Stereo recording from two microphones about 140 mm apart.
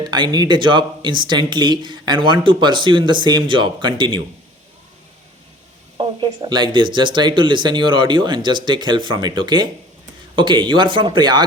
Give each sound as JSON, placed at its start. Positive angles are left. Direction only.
{"t": 0.0, "sound": "speech", "side_deg": -30}
{"t": 6.0, "sound": "speech", "side_deg": -35}